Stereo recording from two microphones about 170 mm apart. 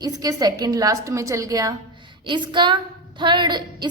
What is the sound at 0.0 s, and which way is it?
A woman's voice, 20° right (ahead or behind).